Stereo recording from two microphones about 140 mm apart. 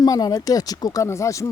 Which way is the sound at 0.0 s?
25° left (ahead or behind).